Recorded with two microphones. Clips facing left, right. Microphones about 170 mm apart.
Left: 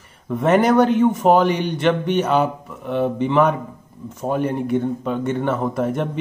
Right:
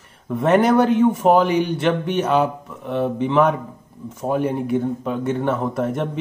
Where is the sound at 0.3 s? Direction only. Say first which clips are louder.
Even; centre (ahead or behind).